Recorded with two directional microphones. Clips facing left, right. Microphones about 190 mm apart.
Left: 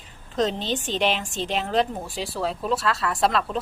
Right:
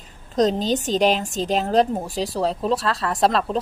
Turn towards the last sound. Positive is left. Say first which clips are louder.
# right 3 dB
turn(degrees=-35)  # may be behind; listen again after turning